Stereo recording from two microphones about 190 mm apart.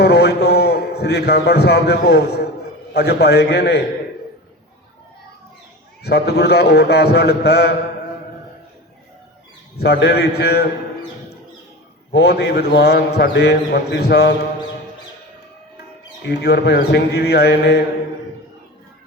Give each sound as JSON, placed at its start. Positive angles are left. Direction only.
{"t": 0.0, "sound": "a man's voice", "side_deg": 60}
{"t": 6.0, "sound": "a man's voice", "side_deg": 60}
{"t": 9.7, "sound": "a man's voice", "side_deg": 60}
{"t": 12.1, "sound": "a man's voice", "side_deg": 60}
{"t": 16.2, "sound": "a man's voice", "side_deg": 60}